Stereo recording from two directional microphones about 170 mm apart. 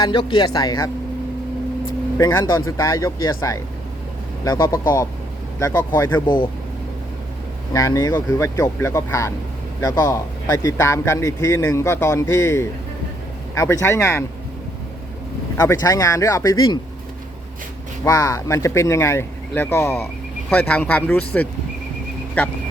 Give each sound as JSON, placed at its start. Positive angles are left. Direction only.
{"t": 0.0, "sound": "speech", "side_deg": 30}
{"t": 2.1, "sound": "a man's voice", "side_deg": 15}
{"t": 7.7, "sound": "a man's voice", "side_deg": 20}
{"t": 15.5, "sound": "speech", "side_deg": 20}
{"t": 18.0, "sound": "a man's voice", "side_deg": 20}